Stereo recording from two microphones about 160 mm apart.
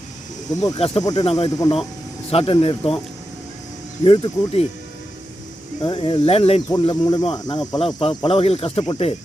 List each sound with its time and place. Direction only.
0.5 s speech: 25° left (ahead or behind)
1.2 s cricket: 40° left (ahead or behind)
1.5 s speech: 25° left (ahead or behind)
2.3 s cricket: 35° left (ahead or behind)
4.0 s cricket: 35° left (ahead or behind)
5.8 s cricket: 30° left (ahead or behind)
6.8 s speech: 25° left (ahead or behind)
7.8 s cricket: 35° left (ahead or behind)